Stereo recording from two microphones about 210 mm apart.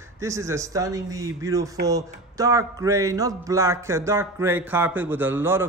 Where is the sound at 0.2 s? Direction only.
15° right (ahead or behind).